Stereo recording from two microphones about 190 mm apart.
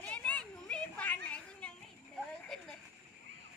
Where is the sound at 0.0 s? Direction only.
5° left (ahead or behind).